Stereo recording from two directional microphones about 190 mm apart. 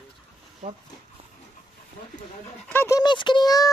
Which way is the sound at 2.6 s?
10° left (ahead or behind).